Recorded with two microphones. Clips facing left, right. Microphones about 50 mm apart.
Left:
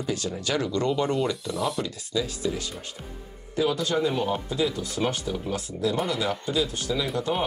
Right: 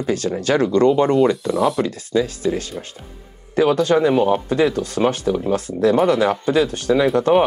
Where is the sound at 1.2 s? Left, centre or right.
Right.